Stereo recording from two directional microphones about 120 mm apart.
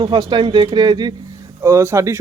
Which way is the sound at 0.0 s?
40° right (ahead or behind).